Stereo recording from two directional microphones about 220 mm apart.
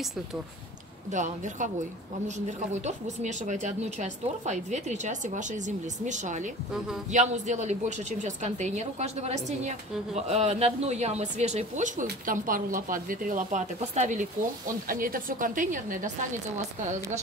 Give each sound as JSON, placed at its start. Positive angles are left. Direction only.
{"t": 1.1, "sound": "a woman's voice", "side_deg": -35}